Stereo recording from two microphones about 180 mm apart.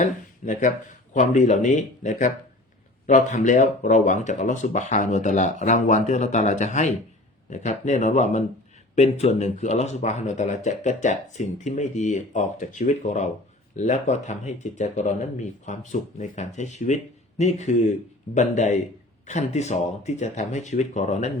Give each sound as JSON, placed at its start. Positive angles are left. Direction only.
{"t": 0.0, "sound": "speech", "side_deg": 45}